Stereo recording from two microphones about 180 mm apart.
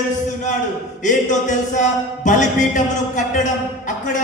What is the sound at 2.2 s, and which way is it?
A man's voice, 45° left (ahead or behind).